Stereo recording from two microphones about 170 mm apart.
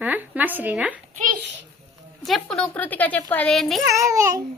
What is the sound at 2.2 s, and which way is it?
Speech, centre (ahead or behind).